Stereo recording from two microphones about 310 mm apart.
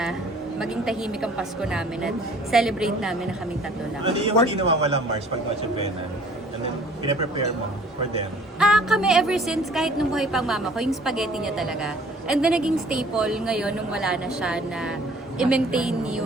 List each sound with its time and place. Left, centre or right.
0.6 s a woman's voice: centre
4.0 s a man's voice: centre
8.5 s a woman's voice: centre